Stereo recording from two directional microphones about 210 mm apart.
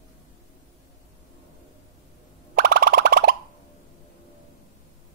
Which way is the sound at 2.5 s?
45° right (ahead or behind).